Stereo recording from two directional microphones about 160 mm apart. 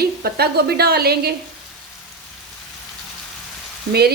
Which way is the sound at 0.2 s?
80° right.